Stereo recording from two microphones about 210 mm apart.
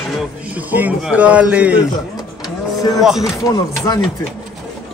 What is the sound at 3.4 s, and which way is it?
Speech, 20° left (ahead or behind).